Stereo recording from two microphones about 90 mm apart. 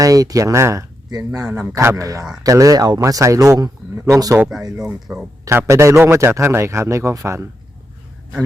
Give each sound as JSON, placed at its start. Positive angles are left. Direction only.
{"t": 0.0, "sound": "a man's voice", "side_deg": -40}
{"t": 5.1, "sound": "a man's voice", "side_deg": -25}